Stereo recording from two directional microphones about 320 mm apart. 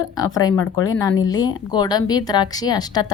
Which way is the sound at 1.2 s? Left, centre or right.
Centre.